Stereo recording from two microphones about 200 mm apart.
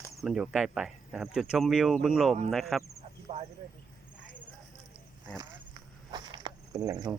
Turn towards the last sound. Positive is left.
turn(degrees=-15)  # may be behind; listen again after turning